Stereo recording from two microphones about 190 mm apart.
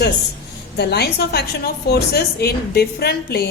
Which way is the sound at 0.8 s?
60° left (ahead or behind).